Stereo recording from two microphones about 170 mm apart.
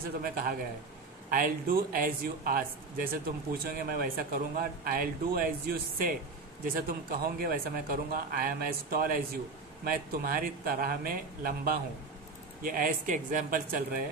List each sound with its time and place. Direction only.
0.0 s speech: 60° right (ahead or behind)